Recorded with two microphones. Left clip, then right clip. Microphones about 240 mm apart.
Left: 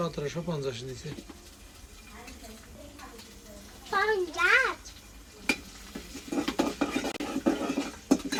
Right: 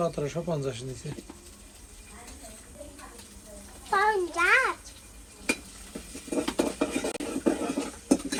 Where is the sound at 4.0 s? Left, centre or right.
Right.